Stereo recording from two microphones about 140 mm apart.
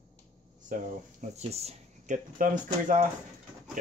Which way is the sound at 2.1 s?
70° right (ahead or behind).